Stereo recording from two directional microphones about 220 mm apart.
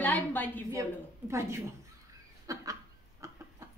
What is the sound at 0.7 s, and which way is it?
Speech, 15° right (ahead or behind).